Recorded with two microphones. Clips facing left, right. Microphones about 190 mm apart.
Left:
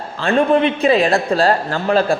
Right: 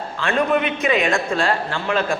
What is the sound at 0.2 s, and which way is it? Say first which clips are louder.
A man's voice: left 5 dB; 35° left (ahead or behind).